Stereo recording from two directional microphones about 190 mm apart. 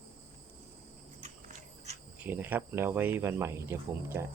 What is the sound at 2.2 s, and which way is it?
Speech, 10° right (ahead or behind).